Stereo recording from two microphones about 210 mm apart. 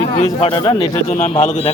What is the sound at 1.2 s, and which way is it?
Speech, 35° left (ahead or behind).